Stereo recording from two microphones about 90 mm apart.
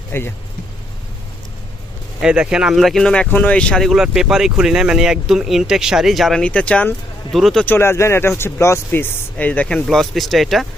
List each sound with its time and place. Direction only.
0.1 s speech: 25° left (ahead or behind)
2.2 s speech: 10° right (ahead or behind)
6.4 s speech: 15° left (ahead or behind)
7.3 s speech: centre (ahead or behind)
7.6 s speech: 25° left (ahead or behind); by 10.7 s centre (ahead or behind)